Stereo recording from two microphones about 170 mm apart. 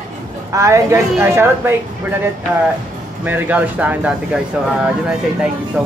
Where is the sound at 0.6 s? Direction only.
15° right (ahead or behind).